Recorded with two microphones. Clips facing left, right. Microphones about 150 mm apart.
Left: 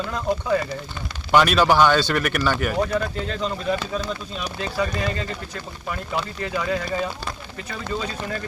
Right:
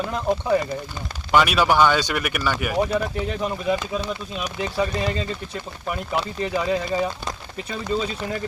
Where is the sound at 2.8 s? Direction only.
20° right (ahead or behind).